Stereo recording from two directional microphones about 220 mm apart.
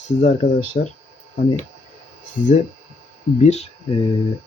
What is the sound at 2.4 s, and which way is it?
Speech, 35° left (ahead or behind).